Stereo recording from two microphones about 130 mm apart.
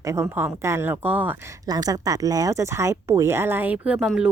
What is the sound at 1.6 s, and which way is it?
A woman's voice, 30° right (ahead or behind).